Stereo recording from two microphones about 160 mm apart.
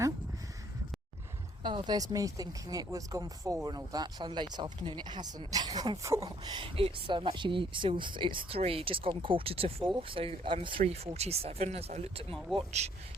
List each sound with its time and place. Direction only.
1.6 s speech: 30° right (ahead or behind)